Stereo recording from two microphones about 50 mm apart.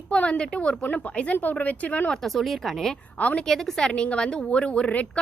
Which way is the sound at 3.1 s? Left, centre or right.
Left.